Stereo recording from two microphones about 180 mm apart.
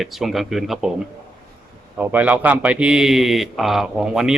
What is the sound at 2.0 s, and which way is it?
A man's voice, 10° right (ahead or behind).